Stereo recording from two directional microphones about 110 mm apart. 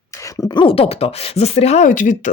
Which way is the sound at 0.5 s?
50° left (ahead or behind).